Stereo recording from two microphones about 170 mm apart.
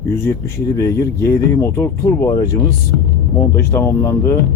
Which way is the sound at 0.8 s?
20° left (ahead or behind).